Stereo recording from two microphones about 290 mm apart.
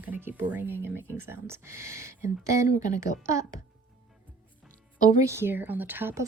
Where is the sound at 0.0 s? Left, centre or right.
Centre.